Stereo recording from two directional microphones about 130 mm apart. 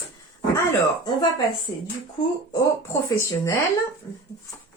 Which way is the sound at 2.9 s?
25° left (ahead or behind).